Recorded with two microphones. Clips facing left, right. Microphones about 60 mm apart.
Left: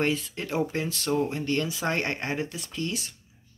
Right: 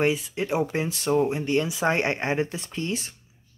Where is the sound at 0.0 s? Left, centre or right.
Centre.